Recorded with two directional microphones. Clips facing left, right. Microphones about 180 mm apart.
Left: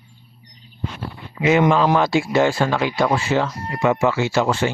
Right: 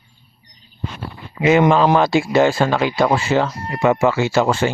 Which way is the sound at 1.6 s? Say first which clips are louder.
Right 2 dB; 30° right (ahead or behind).